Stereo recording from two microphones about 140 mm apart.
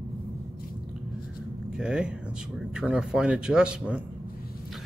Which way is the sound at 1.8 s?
5° right (ahead or behind).